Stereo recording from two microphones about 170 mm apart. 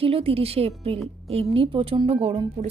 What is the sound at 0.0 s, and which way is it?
Speech, 35° right (ahead or behind).